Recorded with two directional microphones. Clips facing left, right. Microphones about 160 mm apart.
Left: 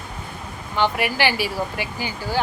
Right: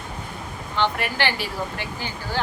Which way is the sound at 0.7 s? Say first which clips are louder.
Left 3 dB; 10° left (ahead or behind).